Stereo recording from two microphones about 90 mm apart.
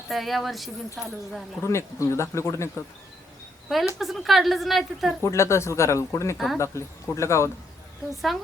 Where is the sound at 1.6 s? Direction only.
30° left (ahead or behind).